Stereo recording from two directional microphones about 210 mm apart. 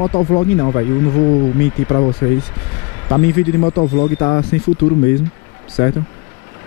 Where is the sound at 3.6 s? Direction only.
30° left (ahead or behind).